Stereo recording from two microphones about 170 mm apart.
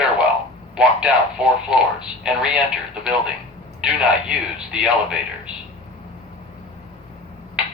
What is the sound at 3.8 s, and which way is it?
Speech, 5° right (ahead or behind).